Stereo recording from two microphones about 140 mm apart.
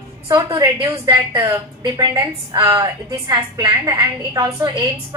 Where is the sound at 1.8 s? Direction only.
30° right (ahead or behind).